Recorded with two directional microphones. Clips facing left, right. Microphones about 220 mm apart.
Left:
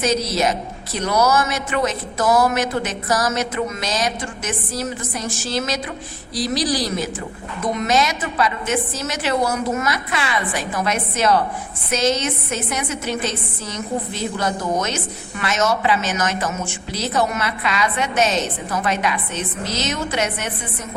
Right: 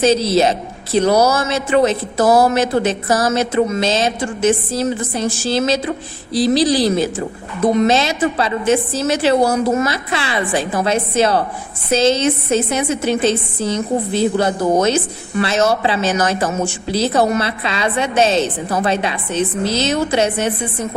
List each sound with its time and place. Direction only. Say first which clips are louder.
0.0 s a woman's voice: right 6 dB; 30° right (ahead or behind)